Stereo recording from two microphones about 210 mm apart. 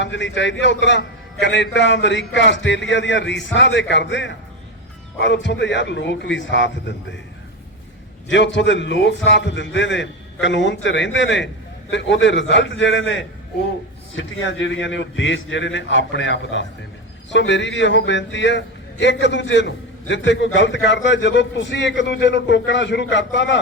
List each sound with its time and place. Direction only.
0.0 s a man's voice: 60° left (ahead or behind)
8.3 s a man's voice: 60° left (ahead or behind)